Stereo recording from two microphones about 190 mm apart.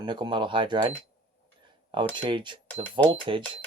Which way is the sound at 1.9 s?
25° right (ahead or behind).